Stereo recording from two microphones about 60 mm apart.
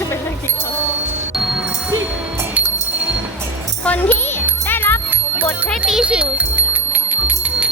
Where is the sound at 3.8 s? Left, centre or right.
Left.